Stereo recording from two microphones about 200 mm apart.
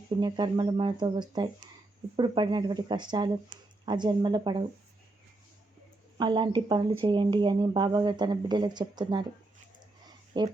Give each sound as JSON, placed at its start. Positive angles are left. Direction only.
{"t": 0.2, "sound": "a woman's voice", "side_deg": -20}
{"t": 6.1, "sound": "a woman's voice", "side_deg": -20}
{"t": 10.3, "sound": "a woman's voice", "side_deg": -25}